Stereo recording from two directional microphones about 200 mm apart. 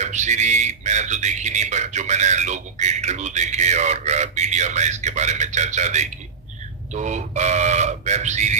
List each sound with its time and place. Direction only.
0.0 s speech: 35° right (ahead or behind)